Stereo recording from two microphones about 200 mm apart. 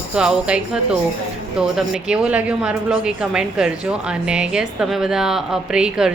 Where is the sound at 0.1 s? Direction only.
5° right (ahead or behind).